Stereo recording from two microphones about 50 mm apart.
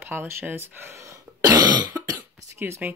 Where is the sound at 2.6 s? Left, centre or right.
Right.